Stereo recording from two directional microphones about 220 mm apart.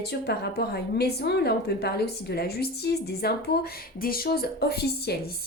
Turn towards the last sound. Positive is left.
turn(degrees=45)  # may be behind; listen again after turning